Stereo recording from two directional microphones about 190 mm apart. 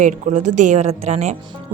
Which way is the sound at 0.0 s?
40° right (ahead or behind).